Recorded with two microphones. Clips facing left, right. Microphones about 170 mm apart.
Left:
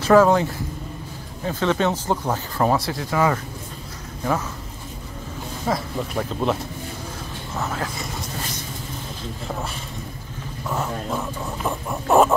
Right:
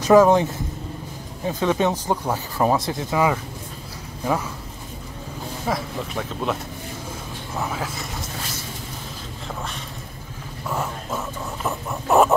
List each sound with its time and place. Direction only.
0.0 s speech: 15° right (ahead or behind)
5.7 s speech: centre (ahead or behind)
7.5 s speech: 10° right (ahead or behind)
11.1 s music: 5° right (ahead or behind)